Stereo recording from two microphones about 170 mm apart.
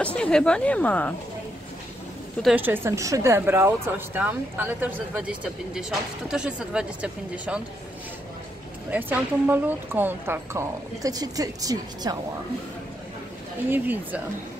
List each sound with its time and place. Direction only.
0.0 s speech: 5° left (ahead or behind)
2.5 s speech: 10° right (ahead or behind)
8.9 s speech: 10° right (ahead or behind)
13.7 s speech: 10° right (ahead or behind)